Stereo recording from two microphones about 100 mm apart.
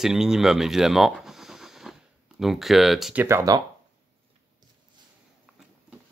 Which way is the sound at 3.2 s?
30° right (ahead or behind).